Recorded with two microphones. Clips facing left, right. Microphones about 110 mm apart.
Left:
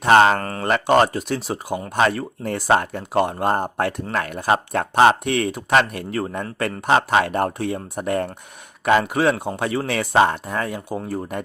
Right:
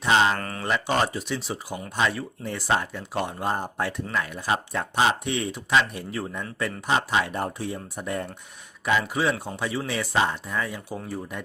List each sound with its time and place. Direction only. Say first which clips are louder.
0.0 s speech: left 7 dB; 55° left (ahead or behind)